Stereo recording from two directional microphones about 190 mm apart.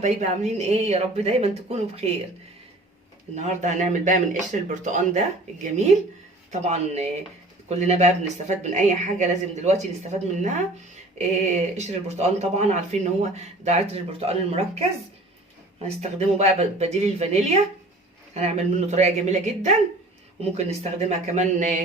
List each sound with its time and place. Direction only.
0.0 s speech: 35° right (ahead or behind)
3.3 s speech: 40° right (ahead or behind)
6.5 s speech: 35° right (ahead or behind)
11.8 s speech: 35° right (ahead or behind)